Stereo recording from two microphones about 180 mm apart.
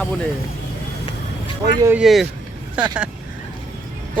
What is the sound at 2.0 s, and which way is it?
Music, centre (ahead or behind).